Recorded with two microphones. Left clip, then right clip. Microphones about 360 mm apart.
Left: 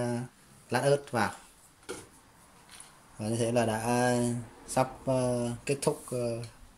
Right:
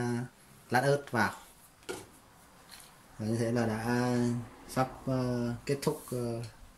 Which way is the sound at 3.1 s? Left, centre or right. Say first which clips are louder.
Left 4 dB; centre.